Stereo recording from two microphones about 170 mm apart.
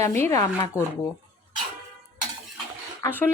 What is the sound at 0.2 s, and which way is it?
Speech, 20° left (ahead or behind).